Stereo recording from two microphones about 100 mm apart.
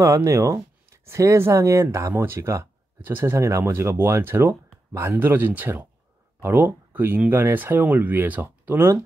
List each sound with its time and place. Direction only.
0.0 s speech: 30° right (ahead or behind)